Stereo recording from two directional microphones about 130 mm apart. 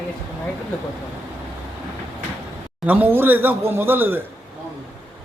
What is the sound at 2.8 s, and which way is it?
Speech, 15° right (ahead or behind).